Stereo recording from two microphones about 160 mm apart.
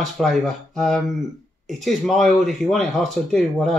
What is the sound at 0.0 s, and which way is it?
Speech, centre (ahead or behind).